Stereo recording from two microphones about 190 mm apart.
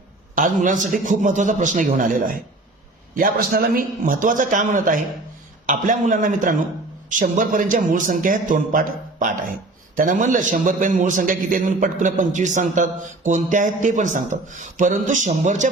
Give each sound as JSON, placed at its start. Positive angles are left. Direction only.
{"t": 0.3, "sound": "speech", "side_deg": -45}